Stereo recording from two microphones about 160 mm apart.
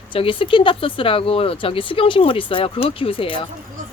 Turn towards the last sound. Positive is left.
turn(degrees=35)  # may be behind; listen again after turning